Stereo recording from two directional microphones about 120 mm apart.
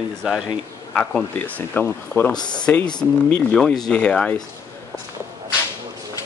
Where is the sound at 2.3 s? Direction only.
35° left (ahead or behind).